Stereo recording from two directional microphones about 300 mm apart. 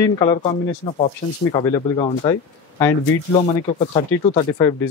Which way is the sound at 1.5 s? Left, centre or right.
Centre.